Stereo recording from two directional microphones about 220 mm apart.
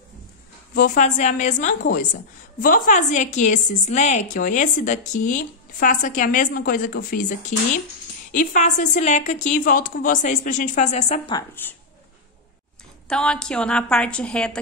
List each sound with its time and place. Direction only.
0.7 s a woman's voice: 35° left (ahead or behind)
11.2 s speech: 15° left (ahead or behind)
13.1 s a woman's voice: 5° left (ahead or behind)